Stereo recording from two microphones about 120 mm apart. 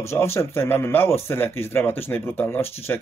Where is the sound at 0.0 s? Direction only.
20° left (ahead or behind).